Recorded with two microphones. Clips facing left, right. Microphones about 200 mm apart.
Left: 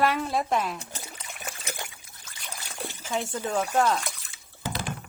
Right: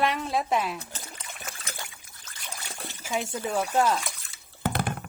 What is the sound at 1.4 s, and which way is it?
Trickle, 15° left (ahead or behind).